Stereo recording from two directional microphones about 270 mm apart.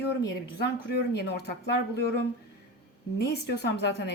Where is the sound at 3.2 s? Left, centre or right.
Left.